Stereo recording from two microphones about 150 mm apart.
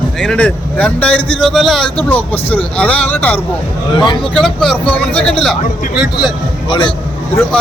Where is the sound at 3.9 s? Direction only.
30° left (ahead or behind).